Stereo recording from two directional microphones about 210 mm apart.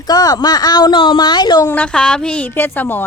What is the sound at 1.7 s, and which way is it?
Speech, 5° left (ahead or behind).